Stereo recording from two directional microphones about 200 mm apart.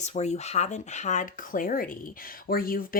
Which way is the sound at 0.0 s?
35° left (ahead or behind).